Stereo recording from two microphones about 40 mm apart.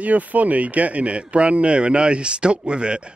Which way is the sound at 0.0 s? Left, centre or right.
Right.